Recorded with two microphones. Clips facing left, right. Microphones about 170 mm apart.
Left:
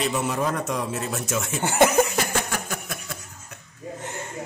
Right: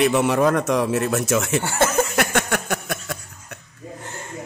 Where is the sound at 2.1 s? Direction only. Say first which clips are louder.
Right 5 dB; 70° right (ahead or behind).